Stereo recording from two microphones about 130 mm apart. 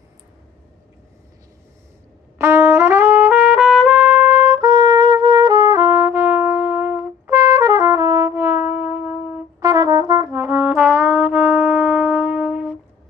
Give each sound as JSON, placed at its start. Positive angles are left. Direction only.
{"t": 2.3, "sound": "trumpet", "side_deg": -20}
{"t": 9.6, "sound": "brass instrument", "side_deg": -30}